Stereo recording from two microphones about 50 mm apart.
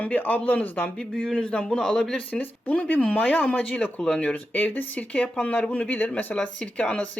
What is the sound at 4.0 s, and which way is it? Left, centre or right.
Speech, centre.